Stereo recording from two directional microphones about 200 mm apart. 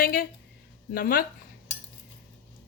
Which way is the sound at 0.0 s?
45° left (ahead or behind).